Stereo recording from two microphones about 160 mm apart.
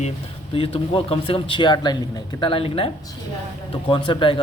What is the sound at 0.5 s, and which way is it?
A man's voice, 35° left (ahead or behind).